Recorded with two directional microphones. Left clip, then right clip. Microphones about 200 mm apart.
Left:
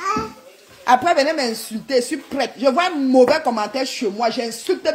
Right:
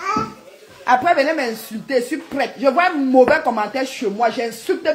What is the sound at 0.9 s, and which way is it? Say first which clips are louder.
Speech: even; 45° left (ahead or behind).